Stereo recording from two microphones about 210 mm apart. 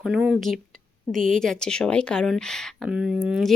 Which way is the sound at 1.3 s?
5° left (ahead or behind).